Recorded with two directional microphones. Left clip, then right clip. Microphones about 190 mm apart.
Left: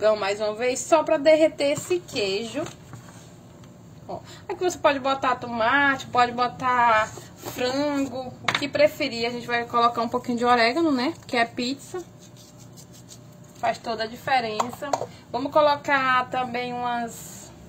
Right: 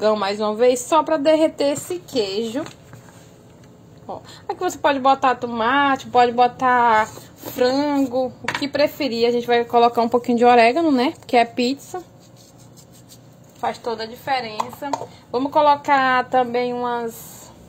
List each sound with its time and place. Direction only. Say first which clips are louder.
0.0 s a woman's voice: right 3 dB; 35° right (ahead or behind)
4.3 s a woman's voice: right 2 dB; 35° right (ahead or behind)
13.6 s a woman's voice: right 1 dB; 35° right (ahead or behind)
14.6 s speech: right 1 dB; centre (ahead or behind)
15.3 s a woman's voice: right 4 dB; 30° right (ahead or behind)